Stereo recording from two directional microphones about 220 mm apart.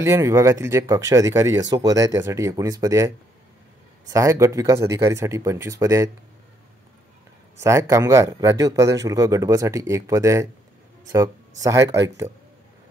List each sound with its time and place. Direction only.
0.0 s speech: 15° right (ahead or behind)
4.1 s speech: 15° right (ahead or behind)
7.6 s speech: 15° right (ahead or behind)